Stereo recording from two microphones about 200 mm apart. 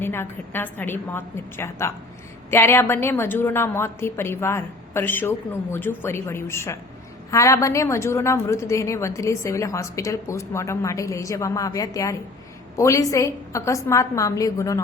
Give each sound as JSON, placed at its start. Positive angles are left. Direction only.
{"t": 0.0, "sound": "a woman's voice", "side_deg": 10}